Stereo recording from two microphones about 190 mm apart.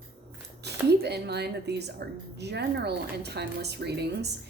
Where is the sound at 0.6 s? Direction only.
60° right (ahead or behind).